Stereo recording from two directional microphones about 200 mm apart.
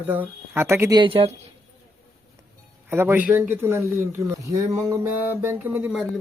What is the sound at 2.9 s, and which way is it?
Speech, 10° right (ahead or behind).